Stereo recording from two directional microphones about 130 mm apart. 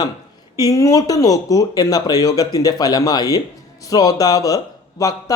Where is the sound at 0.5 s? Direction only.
25° left (ahead or behind).